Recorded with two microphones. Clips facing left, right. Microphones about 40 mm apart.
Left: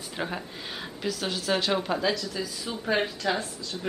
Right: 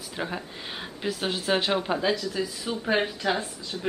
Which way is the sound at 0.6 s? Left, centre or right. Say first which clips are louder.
Even; centre.